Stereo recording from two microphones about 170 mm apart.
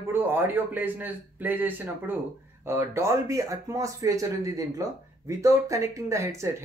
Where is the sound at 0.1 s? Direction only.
10° right (ahead or behind).